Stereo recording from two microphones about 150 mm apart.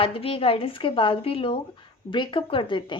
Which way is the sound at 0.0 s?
35° left (ahead or behind).